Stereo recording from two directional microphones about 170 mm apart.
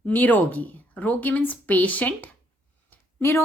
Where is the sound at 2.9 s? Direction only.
15° left (ahead or behind).